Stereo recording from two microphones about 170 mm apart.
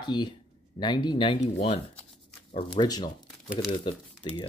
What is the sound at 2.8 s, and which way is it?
Speech, 25° left (ahead or behind).